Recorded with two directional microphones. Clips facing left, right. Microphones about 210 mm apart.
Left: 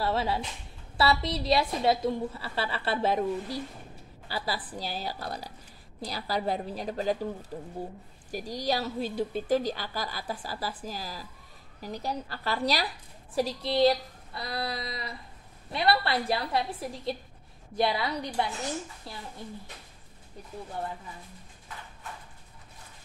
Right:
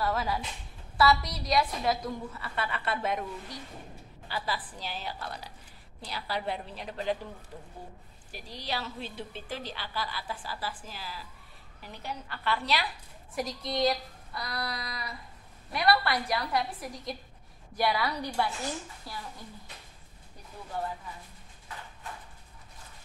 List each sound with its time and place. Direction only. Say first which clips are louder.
0.0 s a woman's voice: left 2 dB; 30° left (ahead or behind)